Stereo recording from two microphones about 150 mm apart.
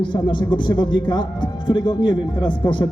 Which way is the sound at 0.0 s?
30° left (ahead or behind).